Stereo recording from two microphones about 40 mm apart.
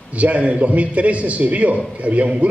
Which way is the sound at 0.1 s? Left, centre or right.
Right.